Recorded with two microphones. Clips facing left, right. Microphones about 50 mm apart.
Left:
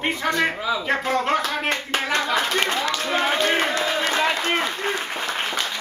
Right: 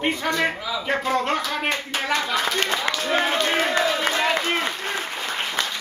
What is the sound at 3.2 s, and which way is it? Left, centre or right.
Speech, centre.